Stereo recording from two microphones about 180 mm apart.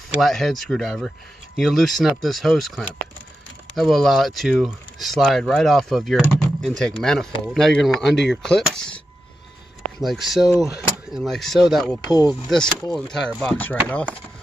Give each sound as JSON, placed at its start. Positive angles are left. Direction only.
{"t": 0.2, "sound": "speech", "side_deg": 0}